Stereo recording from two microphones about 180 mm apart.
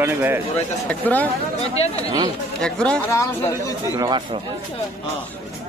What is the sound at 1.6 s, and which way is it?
Speech, 35° left (ahead or behind).